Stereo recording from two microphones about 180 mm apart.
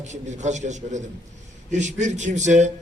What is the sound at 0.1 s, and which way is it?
A man's voice, 40° right (ahead or behind).